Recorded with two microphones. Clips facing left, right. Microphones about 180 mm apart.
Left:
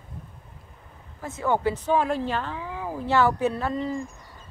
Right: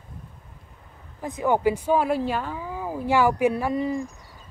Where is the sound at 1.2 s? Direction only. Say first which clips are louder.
Right 2 dB; 15° right (ahead or behind).